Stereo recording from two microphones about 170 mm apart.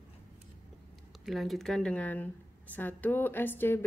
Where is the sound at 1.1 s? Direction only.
Centre (ahead or behind).